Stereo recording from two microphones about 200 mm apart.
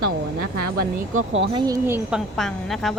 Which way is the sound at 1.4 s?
25° right (ahead or behind).